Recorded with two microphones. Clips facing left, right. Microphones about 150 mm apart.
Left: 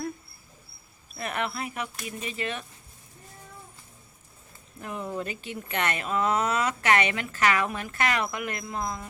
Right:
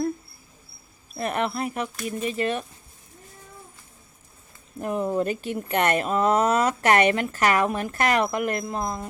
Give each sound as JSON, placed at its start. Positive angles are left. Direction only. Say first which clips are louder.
{"t": 1.1, "sound": "speech", "louder": "right 5 dB", "side_deg": -40}
{"t": 4.8, "sound": "speech", "louder": "right 9 dB", "side_deg": -45}